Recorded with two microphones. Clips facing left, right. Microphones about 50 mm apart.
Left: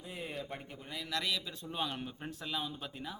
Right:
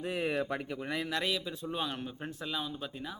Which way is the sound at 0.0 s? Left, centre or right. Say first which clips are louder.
Right 10 dB; right.